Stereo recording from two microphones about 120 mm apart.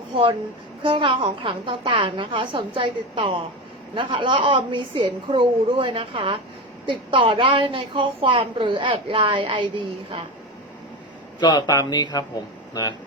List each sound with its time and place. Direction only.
0.1 s a woman's voice: 40° right (ahead or behind)
11.3 s speech: 35° left (ahead or behind)